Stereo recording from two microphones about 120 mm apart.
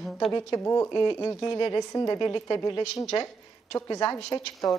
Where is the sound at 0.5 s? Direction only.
25° left (ahead or behind).